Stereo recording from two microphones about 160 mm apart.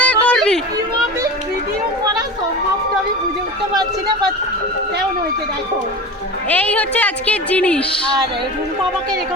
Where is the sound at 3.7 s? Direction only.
25° right (ahead or behind).